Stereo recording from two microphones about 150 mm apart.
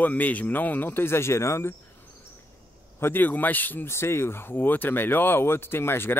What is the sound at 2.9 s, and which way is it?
Speech, 15° left (ahead or behind).